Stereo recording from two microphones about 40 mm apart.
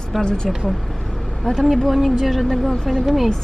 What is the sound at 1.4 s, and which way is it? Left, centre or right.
Speech, centre.